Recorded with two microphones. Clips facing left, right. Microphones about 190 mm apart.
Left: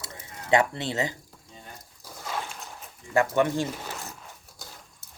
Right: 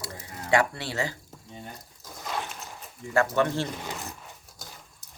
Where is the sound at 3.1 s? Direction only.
15° left (ahead or behind).